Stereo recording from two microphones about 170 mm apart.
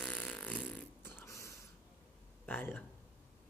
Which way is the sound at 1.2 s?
15° left (ahead or behind).